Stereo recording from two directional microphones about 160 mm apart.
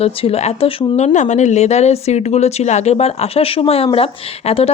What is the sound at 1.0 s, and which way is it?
Speech, 45° left (ahead or behind).